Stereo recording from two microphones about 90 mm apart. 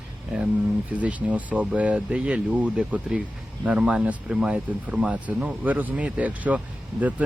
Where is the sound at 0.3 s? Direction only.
15° right (ahead or behind).